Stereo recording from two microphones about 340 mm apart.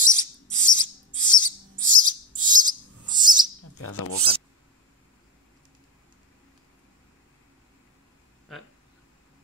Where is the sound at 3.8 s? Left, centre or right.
Left.